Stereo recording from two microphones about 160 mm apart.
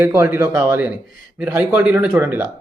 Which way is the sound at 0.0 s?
10° right (ahead or behind).